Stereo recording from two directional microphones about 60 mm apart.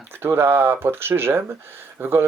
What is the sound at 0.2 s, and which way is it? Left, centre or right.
Speech, right.